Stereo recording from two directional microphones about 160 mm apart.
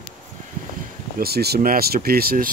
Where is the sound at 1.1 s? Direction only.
80° right.